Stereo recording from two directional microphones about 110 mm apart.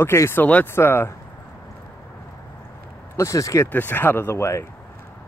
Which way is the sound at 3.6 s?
15° left (ahead or behind).